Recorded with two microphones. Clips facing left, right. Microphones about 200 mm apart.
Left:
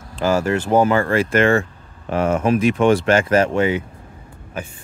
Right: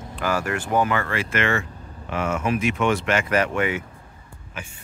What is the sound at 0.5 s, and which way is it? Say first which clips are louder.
Speech: left 6 dB; 35° left (ahead or behind).